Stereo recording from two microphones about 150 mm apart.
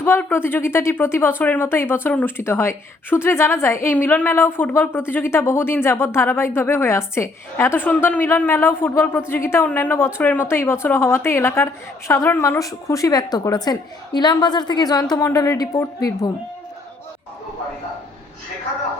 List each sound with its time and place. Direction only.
0.0 s a woman's voice: 15° left (ahead or behind)